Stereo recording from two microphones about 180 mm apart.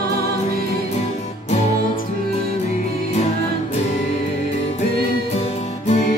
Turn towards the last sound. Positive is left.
turn(degrees=40)  # may be behind; listen again after turning